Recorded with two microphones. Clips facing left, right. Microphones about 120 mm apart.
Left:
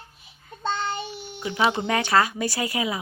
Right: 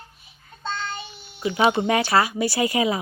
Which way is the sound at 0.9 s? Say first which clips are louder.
Left 4 dB; 55° left (ahead or behind).